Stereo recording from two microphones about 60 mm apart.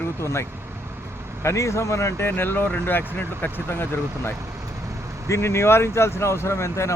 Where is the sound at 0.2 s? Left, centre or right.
Left.